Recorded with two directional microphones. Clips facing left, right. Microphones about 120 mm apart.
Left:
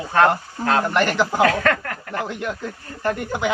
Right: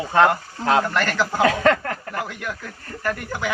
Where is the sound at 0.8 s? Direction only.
20° left (ahead or behind).